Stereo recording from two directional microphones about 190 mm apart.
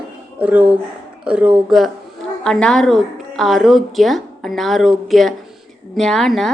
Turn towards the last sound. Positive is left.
turn(degrees=0)  # may be behind; listen again after turning